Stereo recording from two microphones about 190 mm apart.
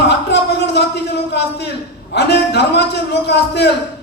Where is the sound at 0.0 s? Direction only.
65° left (ahead or behind).